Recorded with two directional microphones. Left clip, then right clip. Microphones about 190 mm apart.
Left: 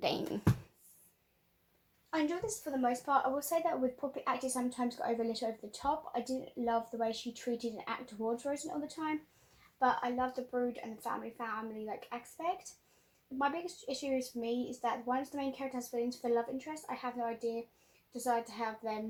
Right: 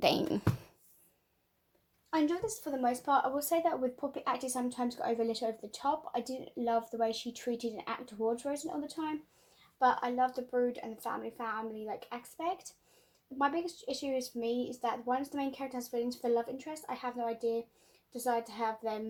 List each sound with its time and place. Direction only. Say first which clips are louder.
0.0 s speech: right 6 dB; 45° right (ahead or behind)
2.0 s a woman's voice: right 3 dB; 50° right (ahead or behind)